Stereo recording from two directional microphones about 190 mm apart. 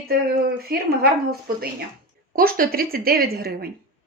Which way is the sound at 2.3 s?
50° right (ahead or behind).